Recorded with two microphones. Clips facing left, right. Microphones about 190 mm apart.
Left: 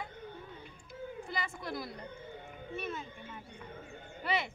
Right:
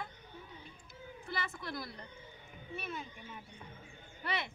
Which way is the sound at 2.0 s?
55° left (ahead or behind).